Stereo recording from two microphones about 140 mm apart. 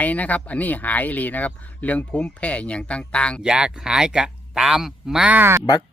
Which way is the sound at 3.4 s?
5° right (ahead or behind).